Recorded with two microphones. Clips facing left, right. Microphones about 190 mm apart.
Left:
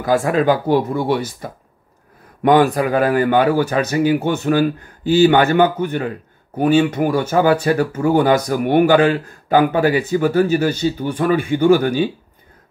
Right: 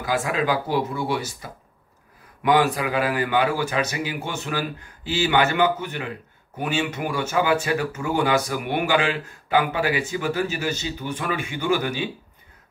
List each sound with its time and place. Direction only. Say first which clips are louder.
0.0 s speech: left 8 dB; 45° left (ahead or behind)